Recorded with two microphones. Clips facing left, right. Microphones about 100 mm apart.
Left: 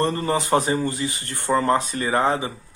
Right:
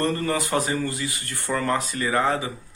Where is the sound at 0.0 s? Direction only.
25° left (ahead or behind).